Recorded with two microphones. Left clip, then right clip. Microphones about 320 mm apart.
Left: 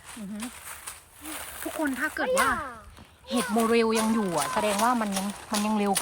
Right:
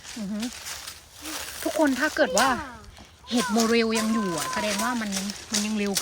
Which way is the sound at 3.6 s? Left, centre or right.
Centre.